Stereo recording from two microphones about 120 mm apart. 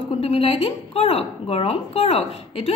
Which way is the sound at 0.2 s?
55° left (ahead or behind).